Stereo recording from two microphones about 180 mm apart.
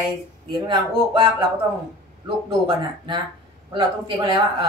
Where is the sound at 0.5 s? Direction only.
25° right (ahead or behind).